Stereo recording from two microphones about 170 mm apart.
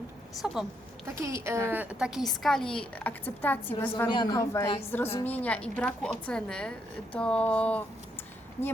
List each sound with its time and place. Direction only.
0.4 s a woman's voice: 5° right (ahead or behind)
1.0 s a woman's voice: 15° right (ahead or behind); by 4.1 s 10° left (ahead or behind)
4.1 s a man's voice: 25° left (ahead or behind)
4.8 s a woman's voice: 15° left (ahead or behind)